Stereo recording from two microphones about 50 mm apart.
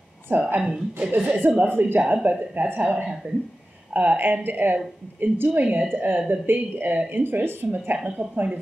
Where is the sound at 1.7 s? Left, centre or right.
Right.